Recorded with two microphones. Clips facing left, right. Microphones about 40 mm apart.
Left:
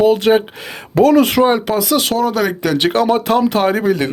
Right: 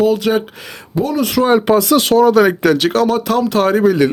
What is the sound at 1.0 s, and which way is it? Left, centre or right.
Speech, left.